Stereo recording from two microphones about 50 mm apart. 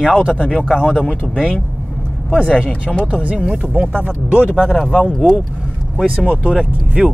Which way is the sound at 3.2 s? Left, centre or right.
Right.